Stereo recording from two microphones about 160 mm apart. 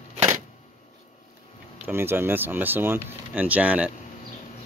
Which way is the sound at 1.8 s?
15° right (ahead or behind).